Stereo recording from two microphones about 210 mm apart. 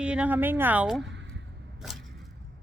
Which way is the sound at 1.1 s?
60° right (ahead or behind).